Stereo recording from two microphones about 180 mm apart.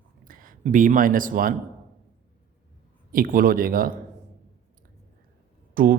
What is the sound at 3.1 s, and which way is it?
Speech, 55° right (ahead or behind).